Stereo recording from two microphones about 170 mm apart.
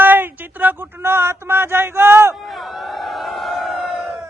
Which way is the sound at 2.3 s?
Centre (ahead or behind).